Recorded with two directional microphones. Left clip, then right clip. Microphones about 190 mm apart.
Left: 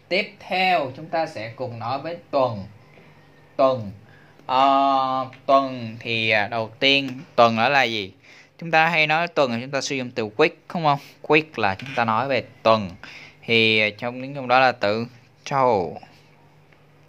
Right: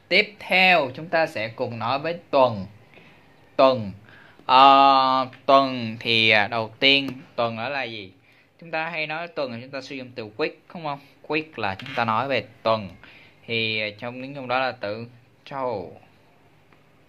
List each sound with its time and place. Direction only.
0.4 s speech: 30° right (ahead or behind)
4.5 s speech: 25° right (ahead or behind); by 7.1 s centre (ahead or behind)
7.3 s speech: 30° left (ahead or behind)
11.5 s speech: 15° left (ahead or behind)
12.7 s speech: 25° left (ahead or behind)